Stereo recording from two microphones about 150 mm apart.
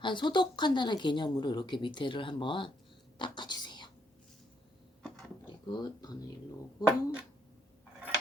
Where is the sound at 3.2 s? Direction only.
30° left (ahead or behind).